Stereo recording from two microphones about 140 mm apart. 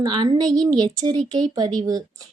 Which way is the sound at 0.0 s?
30° right (ahead or behind).